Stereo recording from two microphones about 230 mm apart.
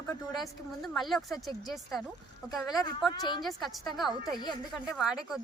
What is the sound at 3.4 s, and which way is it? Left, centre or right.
A woman's voice, centre.